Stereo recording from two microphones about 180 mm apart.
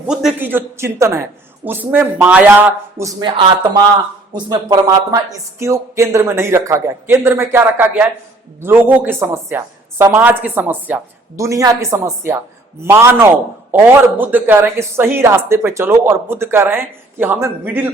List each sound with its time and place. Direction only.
0.1 s a man's voice: 5° right (ahead or behind); by 3.4 s 20° right (ahead or behind)
4.4 s a man's voice: 20° right (ahead or behind)